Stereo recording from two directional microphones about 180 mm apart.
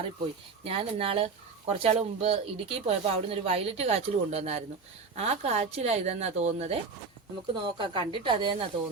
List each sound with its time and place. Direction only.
0.6 s a woman's voice: 30° right (ahead or behind)